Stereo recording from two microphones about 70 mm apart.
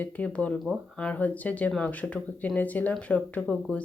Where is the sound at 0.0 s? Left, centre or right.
Centre.